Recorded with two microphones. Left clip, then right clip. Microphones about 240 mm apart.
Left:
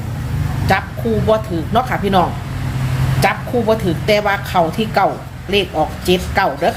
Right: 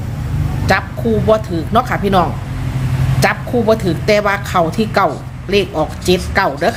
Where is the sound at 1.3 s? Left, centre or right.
Centre.